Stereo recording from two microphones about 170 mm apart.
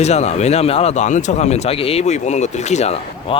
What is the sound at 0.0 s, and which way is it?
Speech, 40° left (ahead or behind).